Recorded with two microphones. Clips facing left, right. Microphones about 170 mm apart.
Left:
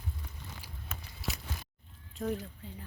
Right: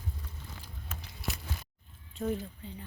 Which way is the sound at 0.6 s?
10° left (ahead or behind).